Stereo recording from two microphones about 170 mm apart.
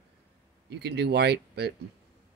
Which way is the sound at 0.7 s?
75° right (ahead or behind).